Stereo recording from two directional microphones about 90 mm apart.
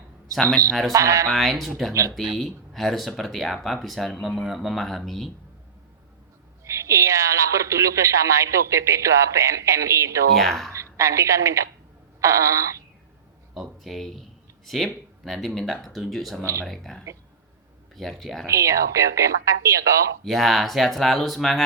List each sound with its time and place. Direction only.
0.7 s speech: centre (ahead or behind)
0.9 s speech: 35° right (ahead or behind)
1.3 s speech: centre (ahead or behind)
6.7 s speech: 35° right (ahead or behind)
10.3 s speech: centre (ahead or behind)
10.7 s a woman's voice: 35° right (ahead or behind)
13.5 s speech: centre (ahead or behind)
16.4 s speech: 25° right (ahead or behind)
16.6 s speech: 5° left (ahead or behind)
18.4 s speech: 35° right (ahead or behind)
20.2 s speech: centre (ahead or behind)